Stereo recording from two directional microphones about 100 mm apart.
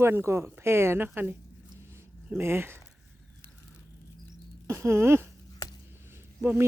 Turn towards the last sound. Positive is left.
turn(degrees=-20)  # may be behind; listen again after turning